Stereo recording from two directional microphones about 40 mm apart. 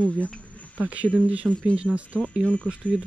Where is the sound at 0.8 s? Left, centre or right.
Right.